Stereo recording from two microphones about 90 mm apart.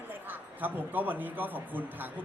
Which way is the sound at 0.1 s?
20° right (ahead or behind).